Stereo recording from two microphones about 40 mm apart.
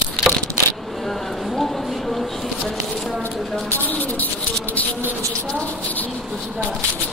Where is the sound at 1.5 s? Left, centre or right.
Centre.